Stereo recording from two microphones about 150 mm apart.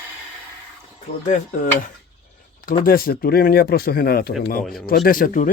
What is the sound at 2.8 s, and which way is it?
Speech, 80° left.